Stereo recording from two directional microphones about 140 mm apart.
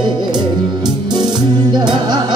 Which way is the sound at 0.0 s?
30° right (ahead or behind).